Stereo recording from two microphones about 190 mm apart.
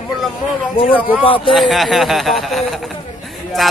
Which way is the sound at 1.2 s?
25° left (ahead or behind).